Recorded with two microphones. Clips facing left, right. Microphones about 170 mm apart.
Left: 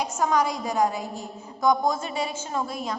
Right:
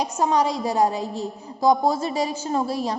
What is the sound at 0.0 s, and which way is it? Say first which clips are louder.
A woman's voice: right 3 dB; 30° right (ahead or behind).